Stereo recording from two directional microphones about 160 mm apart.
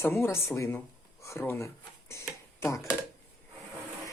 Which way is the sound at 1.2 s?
15° left (ahead or behind).